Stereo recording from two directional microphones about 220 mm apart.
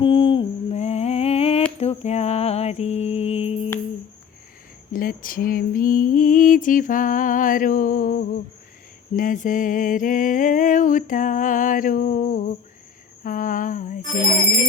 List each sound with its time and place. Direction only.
0.0 s humming: 25° left (ahead or behind)
1.8 s mantra: 30° left (ahead or behind)
4.9 s a sound: 40° left (ahead or behind)